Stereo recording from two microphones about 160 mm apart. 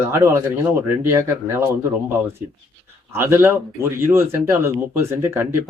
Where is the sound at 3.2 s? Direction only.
15° right (ahead or behind).